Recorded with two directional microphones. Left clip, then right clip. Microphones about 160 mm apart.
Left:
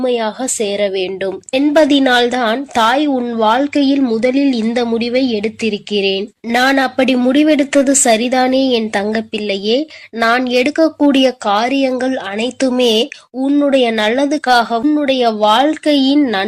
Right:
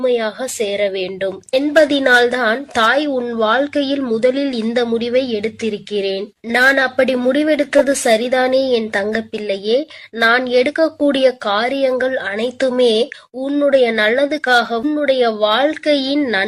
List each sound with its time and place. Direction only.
0.0 s a woman's voice: 5° left (ahead or behind)
12.8 s speech: 35° right (ahead or behind)
13.4 s a woman's voice: 5° left (ahead or behind)